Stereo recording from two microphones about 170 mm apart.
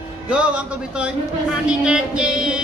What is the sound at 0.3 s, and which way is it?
Speech, 5° right (ahead or behind).